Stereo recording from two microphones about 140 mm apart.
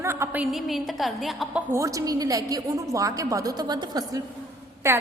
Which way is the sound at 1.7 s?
25° right (ahead or behind).